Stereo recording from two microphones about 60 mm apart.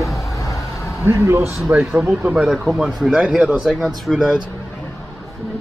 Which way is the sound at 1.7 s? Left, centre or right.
Right.